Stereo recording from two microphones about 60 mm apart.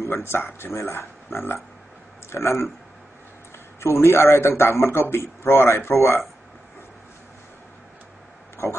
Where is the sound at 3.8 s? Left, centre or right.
Left.